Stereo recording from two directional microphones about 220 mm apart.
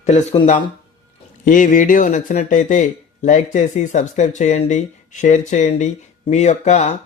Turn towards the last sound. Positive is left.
turn(degrees=30)  # may be behind; listen again after turning